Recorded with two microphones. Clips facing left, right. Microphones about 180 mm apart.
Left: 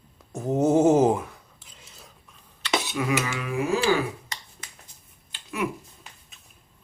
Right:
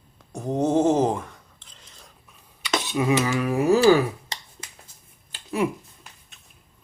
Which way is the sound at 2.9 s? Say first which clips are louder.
Right 9 dB; 25° right (ahead or behind).